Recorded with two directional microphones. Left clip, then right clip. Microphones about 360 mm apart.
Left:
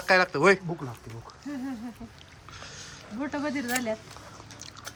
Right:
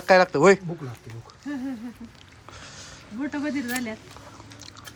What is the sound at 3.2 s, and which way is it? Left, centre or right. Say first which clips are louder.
Speech: right 2 dB; left.